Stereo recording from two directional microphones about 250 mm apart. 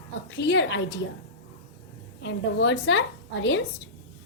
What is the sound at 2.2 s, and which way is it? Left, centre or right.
A woman's voice, left.